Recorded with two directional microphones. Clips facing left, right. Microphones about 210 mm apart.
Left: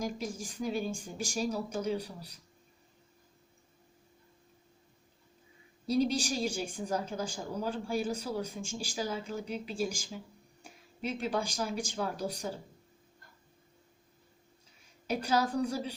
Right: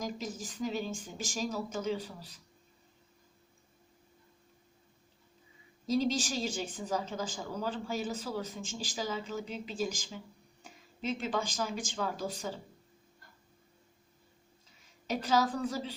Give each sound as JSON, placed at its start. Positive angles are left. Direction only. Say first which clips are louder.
{"t": 0.0, "sound": "speech", "louder": "left 2 dB", "side_deg": 10}
{"t": 5.8, "sound": "speech", "louder": "left 1 dB", "side_deg": 10}
{"t": 15.0, "sound": "speech", "louder": "even", "side_deg": 10}